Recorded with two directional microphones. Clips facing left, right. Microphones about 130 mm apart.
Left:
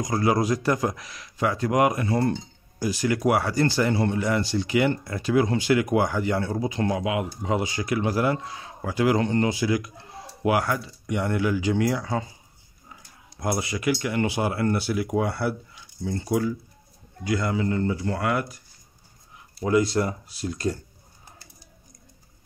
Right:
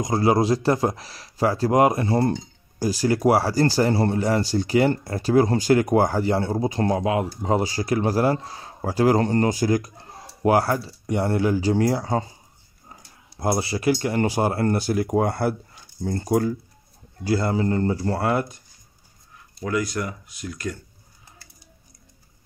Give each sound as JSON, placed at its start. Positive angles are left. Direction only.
{"t": 0.0, "sound": "a man's voice", "side_deg": -25}
{"t": 13.4, "sound": "a man's voice", "side_deg": -30}
{"t": 17.2, "sound": "a man's voice", "side_deg": -35}
{"t": 19.6, "sound": "speech", "side_deg": 25}